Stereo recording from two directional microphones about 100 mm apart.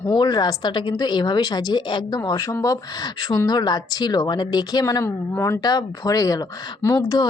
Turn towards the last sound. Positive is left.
turn(degrees=35)  # may be behind; listen again after turning